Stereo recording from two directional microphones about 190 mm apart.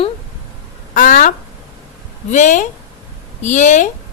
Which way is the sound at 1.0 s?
45° left (ahead or behind).